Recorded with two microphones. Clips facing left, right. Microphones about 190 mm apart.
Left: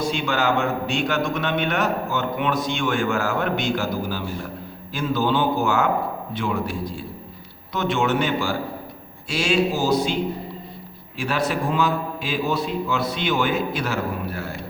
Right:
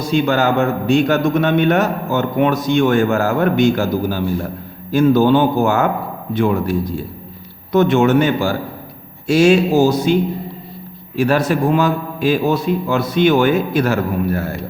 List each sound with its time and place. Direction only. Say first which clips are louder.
0.0 s a man's voice: right 7 dB; 40° right (ahead or behind)
11.2 s a man's voice: right 8 dB; 45° right (ahead or behind)